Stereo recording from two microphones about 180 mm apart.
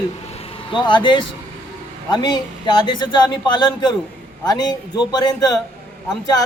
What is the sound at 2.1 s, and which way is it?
A man's voice, 25° left (ahead or behind).